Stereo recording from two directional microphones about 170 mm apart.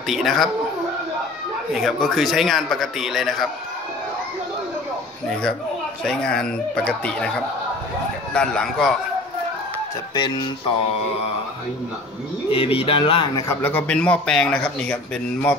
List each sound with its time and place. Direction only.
0.0 s a man's voice: centre (ahead or behind)
1.7 s a man's voice: centre (ahead or behind)
5.3 s a man's voice: 5° left (ahead or behind)
10.1 s speech: 25° left (ahead or behind)
12.4 s speech: 35° left (ahead or behind)
13.5 s speech: 10° left (ahead or behind)